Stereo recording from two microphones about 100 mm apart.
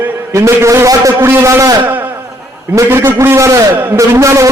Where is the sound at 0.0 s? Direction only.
30° right (ahead or behind).